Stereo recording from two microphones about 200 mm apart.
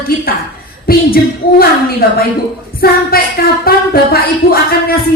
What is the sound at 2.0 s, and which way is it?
Music, 50° left (ahead or behind).